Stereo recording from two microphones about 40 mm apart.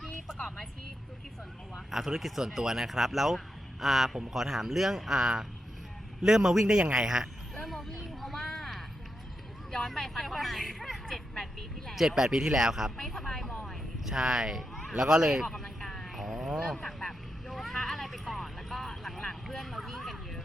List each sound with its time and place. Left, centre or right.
0.3 s music: centre
1.7 s speech: centre
7.6 s a sound: centre
9.7 s speech: centre
11.9 s speech: centre
13.2 s speech: centre
14.0 s speech: centre
15.4 s a sound: centre
16.1 s sheep: centre
16.6 s vehicle: centre